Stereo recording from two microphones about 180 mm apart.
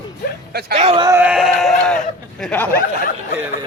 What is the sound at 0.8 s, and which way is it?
Speech, 35° right (ahead or behind).